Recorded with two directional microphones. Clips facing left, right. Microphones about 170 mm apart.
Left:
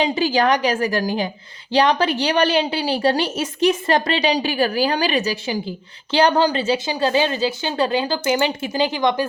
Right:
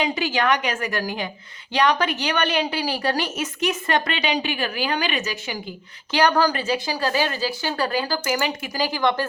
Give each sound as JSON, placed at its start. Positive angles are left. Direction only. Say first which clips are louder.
{"t": 0.0, "sound": "a woman's voice", "louder": "left 5 dB", "side_deg": 30}